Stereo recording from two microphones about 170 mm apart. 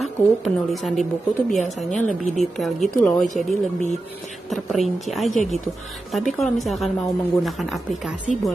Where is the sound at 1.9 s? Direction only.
45° left (ahead or behind).